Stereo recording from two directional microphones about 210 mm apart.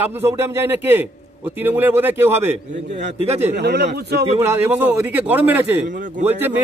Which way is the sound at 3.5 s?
55° right (ahead or behind).